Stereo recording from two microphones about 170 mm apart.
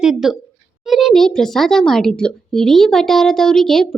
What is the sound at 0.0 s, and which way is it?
Speech, 5° right (ahead or behind).